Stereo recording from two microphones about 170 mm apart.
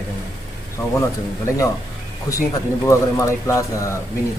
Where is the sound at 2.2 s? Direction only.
20° left (ahead or behind).